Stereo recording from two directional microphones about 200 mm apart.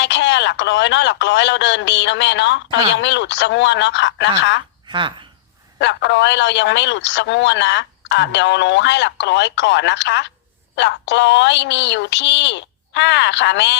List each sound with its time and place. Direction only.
0.0 s a man's voice: 60° left (ahead or behind)
4.9 s speech: 25° right (ahead or behind)
5.8 s a man's voice: 60° left (ahead or behind)